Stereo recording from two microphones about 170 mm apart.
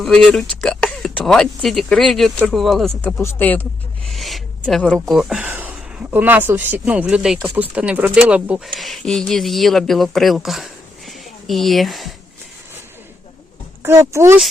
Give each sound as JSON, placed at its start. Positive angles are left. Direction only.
{"t": 0.0, "sound": "speech", "side_deg": 5}
{"t": 3.0, "sound": "speech", "side_deg": 10}
{"t": 4.1, "sound": "speech", "side_deg": 0}
{"t": 13.8, "sound": "speech", "side_deg": -15}